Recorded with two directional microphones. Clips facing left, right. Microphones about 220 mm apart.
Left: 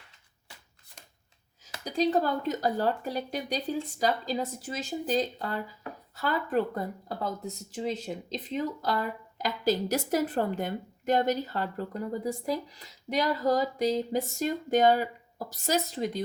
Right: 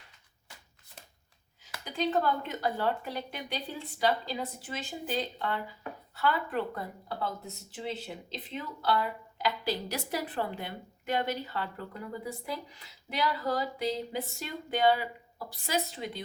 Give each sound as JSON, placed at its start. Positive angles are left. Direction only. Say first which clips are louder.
{"t": 1.8, "sound": "speech", "louder": "left 3 dB", "side_deg": 40}